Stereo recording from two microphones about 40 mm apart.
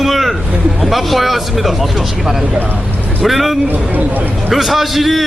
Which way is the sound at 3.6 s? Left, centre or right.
Right.